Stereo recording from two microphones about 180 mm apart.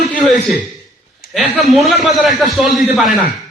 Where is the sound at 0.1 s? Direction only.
Centre (ahead or behind).